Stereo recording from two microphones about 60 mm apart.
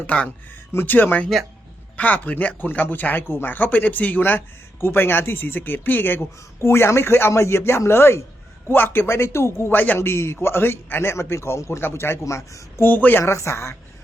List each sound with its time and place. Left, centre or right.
0.1 s a man's voice: left
11.8 s speech: left
12.2 s speech: left
12.8 s speech: left
13.3 s a man's voice: left